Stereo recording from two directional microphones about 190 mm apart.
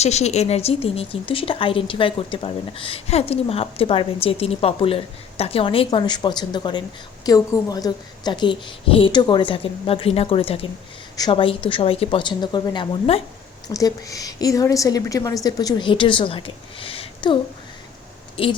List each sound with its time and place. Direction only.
0.0 s a woman's voice: 35° left (ahead or behind)
13.7 s a woman's voice: 20° left (ahead or behind)
16.8 s a sound: 30° left (ahead or behind)
18.4 s a woman's voice: 30° left (ahead or behind)